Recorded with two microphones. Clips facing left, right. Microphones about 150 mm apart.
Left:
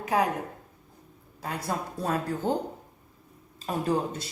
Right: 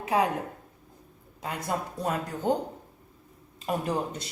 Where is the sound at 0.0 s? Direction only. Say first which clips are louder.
Even; 25° right (ahead or behind).